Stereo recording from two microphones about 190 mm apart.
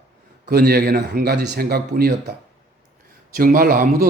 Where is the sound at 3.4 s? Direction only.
50° right (ahead or behind).